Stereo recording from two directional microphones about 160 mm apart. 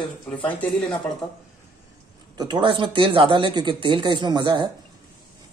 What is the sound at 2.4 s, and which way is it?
Speech, 30° right (ahead or behind).